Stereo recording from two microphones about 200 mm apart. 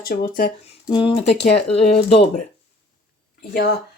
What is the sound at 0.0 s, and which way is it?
Speech, 45° left (ahead or behind).